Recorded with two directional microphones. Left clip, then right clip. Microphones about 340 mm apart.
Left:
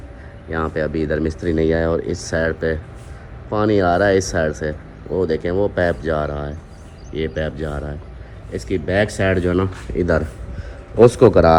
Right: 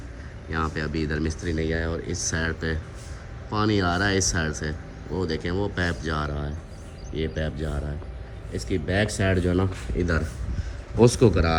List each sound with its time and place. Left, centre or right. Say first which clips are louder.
0.5 s speech: left 7 dB; centre